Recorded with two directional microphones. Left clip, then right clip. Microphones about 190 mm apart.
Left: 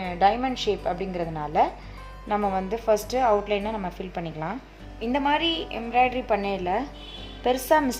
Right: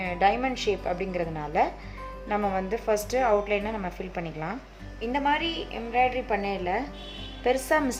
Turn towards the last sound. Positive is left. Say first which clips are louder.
# left 3 dB
turn(degrees=10)  # may be behind; listen again after turning